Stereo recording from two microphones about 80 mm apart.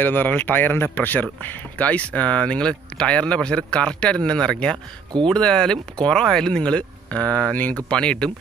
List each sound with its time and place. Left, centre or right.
0.0 s speech: left